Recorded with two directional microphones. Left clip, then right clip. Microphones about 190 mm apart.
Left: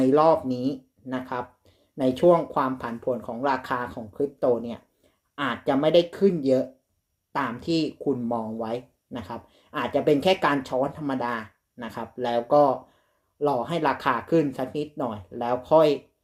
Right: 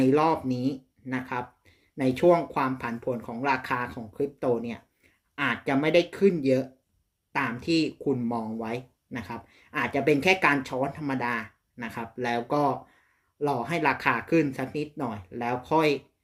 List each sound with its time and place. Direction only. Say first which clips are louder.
0.0 s speech: left 4 dB; 5° right (ahead or behind)